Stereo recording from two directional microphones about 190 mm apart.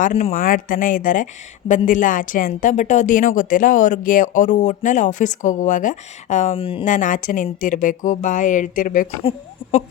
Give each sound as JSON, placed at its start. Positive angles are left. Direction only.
{"t": 0.0, "sound": "speech", "side_deg": 35}
{"t": 0.3, "sound": "a woman's voice", "side_deg": 45}
{"t": 6.9, "sound": "a woman's voice", "side_deg": 45}